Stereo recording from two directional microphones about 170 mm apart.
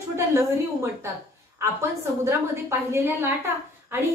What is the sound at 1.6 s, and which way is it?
A woman's voice, 15° right (ahead or behind).